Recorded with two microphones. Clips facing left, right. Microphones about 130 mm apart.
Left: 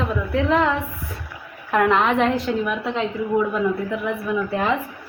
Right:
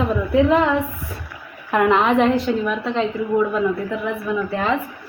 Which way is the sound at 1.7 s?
5° right (ahead or behind).